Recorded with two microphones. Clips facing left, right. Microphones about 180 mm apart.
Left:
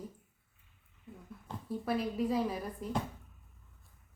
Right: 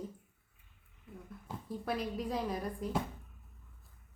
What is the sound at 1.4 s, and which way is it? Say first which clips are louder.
A woman's voice: left 2 dB; centre (ahead or behind).